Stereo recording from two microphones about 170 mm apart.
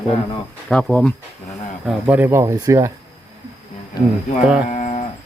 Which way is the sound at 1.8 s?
10° right (ahead or behind).